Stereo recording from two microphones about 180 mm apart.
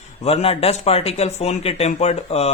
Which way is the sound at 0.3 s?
35° left (ahead or behind).